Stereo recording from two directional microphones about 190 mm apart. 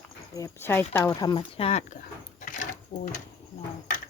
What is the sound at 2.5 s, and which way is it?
Drawer open or close, 45° left (ahead or behind).